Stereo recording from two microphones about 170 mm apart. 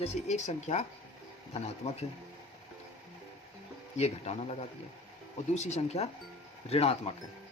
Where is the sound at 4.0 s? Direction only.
40° left (ahead or behind).